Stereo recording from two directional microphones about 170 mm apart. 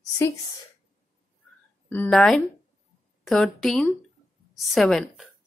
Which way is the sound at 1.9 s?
10° left (ahead or behind).